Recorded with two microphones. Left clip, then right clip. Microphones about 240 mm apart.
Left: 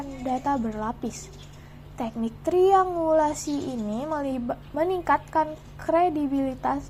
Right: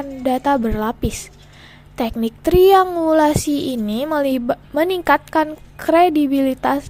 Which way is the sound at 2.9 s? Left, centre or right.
Right.